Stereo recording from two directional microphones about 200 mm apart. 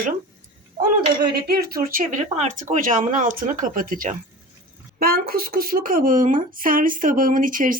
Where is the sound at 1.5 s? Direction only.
50° right (ahead or behind).